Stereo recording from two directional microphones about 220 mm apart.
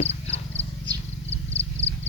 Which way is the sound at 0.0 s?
30° left (ahead or behind).